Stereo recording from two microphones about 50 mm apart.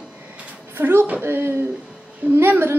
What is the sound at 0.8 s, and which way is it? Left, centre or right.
A woman's voice, right.